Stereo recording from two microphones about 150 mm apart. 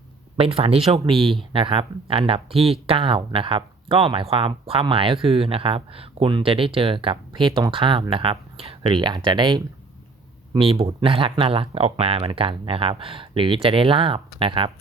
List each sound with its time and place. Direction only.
0.3 s speech: 40° right (ahead or behind)